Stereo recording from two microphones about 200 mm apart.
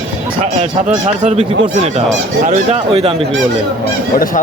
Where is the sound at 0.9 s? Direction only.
35° right (ahead or behind).